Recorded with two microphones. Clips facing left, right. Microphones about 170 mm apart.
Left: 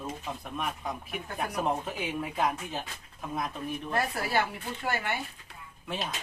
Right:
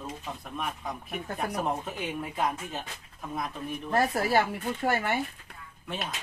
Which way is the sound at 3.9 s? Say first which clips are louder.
Right 6 dB; 45° right (ahead or behind).